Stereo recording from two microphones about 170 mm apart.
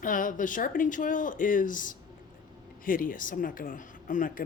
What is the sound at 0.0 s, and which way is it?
Speech, 50° left (ahead or behind).